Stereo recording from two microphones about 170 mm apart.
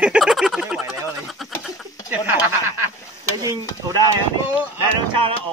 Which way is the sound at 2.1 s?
10° right (ahead or behind).